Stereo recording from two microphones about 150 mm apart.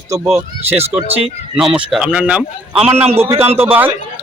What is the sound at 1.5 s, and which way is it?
A man's voice, 5° right (ahead or behind).